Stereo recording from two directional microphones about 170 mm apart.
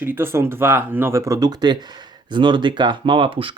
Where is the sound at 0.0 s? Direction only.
10° right (ahead or behind).